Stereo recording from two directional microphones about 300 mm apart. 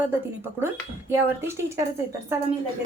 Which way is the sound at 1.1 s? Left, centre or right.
Centre.